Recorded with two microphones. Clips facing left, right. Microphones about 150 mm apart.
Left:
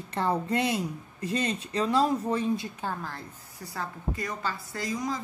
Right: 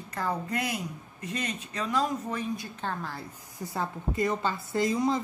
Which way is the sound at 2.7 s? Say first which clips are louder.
Even; 5° left (ahead or behind).